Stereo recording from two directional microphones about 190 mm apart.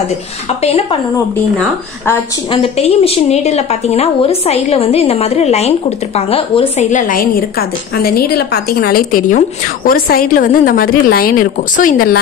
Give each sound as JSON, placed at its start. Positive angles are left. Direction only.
{"t": 2.5, "sound": "a woman's voice", "side_deg": 30}